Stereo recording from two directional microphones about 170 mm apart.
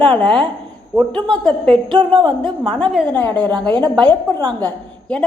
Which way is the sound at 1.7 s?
30° right (ahead or behind).